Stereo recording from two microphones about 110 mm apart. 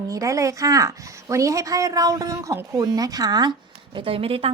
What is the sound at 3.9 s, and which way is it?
Speech, 55° right (ahead or behind).